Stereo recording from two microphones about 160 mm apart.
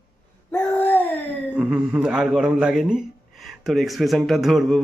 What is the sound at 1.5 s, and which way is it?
Speech, 5° right (ahead or behind).